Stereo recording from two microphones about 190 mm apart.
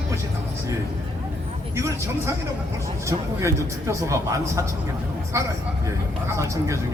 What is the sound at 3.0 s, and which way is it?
A man's voice, 15° right (ahead or behind).